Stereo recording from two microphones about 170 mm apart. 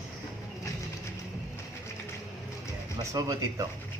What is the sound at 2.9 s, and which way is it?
Speech, 20° right (ahead or behind).